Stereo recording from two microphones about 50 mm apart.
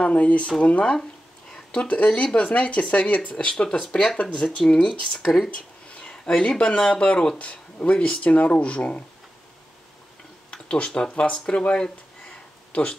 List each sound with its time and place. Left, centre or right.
0.0 s speech: left
4.6 s speech: centre
5.5 s a sound: left
6.3 s speech: centre
10.5 s a sound: left
11.1 s speech: left